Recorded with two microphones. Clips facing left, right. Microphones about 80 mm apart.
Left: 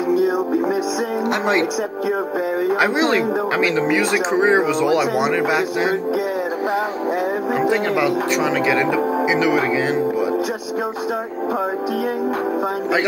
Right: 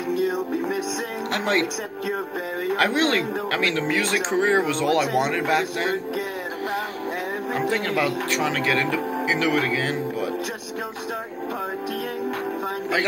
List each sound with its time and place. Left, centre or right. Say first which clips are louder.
2.7 s speech: left 2 dB; centre
7.5 s speech: left 4 dB; centre